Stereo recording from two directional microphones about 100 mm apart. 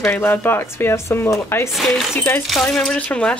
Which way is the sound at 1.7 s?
Centre (ahead or behind).